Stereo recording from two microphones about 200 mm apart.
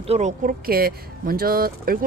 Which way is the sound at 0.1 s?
35° right (ahead or behind).